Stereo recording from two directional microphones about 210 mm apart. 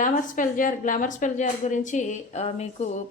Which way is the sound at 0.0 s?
40° left (ahead or behind).